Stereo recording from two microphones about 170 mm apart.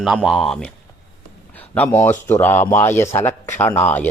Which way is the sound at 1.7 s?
15° left (ahead or behind).